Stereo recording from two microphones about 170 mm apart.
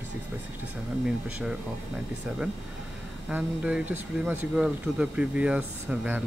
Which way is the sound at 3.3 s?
10° right (ahead or behind).